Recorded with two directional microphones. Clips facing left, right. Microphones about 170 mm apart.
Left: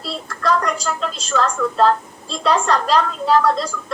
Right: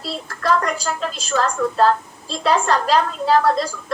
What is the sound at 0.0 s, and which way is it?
A woman's voice, centre (ahead or behind).